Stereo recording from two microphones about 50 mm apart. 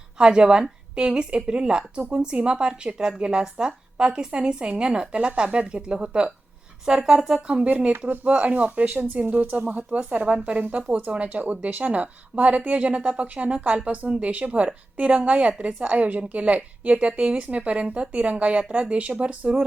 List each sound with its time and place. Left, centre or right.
0.2 s a woman's voice: centre